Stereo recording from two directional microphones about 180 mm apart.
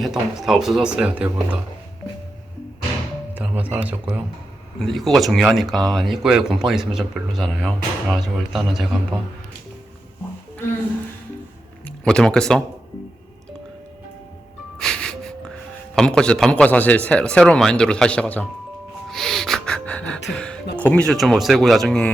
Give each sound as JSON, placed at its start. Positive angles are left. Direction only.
{"t": 0.0, "sound": "speech", "side_deg": 0}
{"t": 3.3, "sound": "music", "side_deg": -10}
{"t": 4.8, "sound": "speech", "side_deg": 0}
{"t": 11.9, "sound": "speech", "side_deg": 5}
{"t": 14.8, "sound": "music", "side_deg": 5}
{"t": 16.0, "sound": "speech", "side_deg": 5}
{"t": 19.0, "sound": "music", "side_deg": 0}
{"t": 20.3, "sound": "a sound", "side_deg": 5}
{"t": 20.7, "sound": "speech", "side_deg": 10}